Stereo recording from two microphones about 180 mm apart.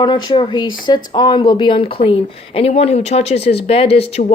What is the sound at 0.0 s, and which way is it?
Speech, 25° left (ahead or behind).